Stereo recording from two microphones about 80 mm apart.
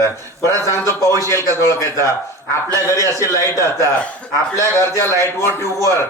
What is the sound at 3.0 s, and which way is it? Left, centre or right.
A man's voice, left.